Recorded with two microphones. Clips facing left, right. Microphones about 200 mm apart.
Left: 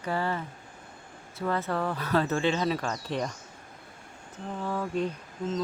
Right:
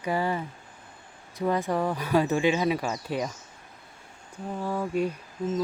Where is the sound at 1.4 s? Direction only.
15° right (ahead or behind).